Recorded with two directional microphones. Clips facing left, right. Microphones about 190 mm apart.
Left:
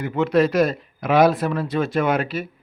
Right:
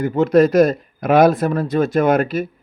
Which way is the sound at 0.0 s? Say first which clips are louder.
Right 5 dB; 40° right (ahead or behind).